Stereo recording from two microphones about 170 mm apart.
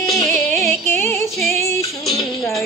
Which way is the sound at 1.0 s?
15° left (ahead or behind).